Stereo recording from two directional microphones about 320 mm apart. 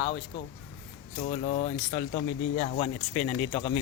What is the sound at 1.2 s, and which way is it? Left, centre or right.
Speech, left.